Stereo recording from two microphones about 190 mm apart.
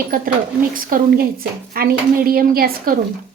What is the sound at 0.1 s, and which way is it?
Speech, 50° right (ahead or behind).